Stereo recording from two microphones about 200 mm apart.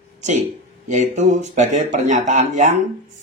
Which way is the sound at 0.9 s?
35° right (ahead or behind).